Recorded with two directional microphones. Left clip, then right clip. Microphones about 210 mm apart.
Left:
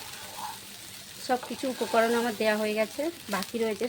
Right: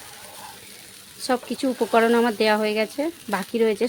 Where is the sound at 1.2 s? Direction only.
55° right (ahead or behind).